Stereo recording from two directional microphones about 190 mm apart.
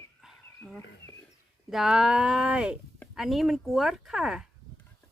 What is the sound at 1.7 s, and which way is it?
Speech, centre (ahead or behind).